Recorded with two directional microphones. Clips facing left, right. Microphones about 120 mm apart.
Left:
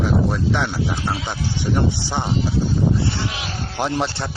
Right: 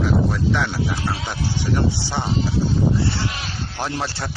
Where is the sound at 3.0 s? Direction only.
15° left (ahead or behind).